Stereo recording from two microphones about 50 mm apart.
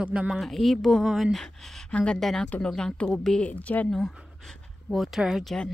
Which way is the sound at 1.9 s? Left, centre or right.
Left.